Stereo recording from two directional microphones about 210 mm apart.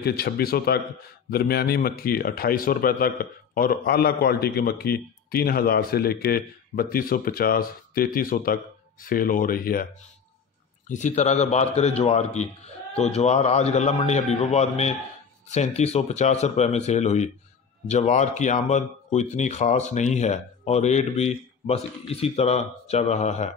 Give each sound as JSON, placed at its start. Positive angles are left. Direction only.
{"t": 0.0, "sound": "a man's voice", "side_deg": 45}
{"t": 10.9, "sound": "speech", "side_deg": 35}